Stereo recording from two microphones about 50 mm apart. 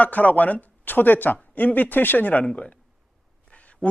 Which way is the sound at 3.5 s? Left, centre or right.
Left.